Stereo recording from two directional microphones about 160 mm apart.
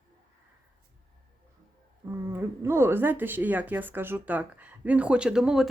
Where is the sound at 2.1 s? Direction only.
15° right (ahead or behind).